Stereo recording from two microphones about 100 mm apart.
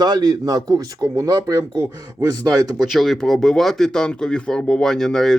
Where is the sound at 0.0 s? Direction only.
40° right (ahead or behind).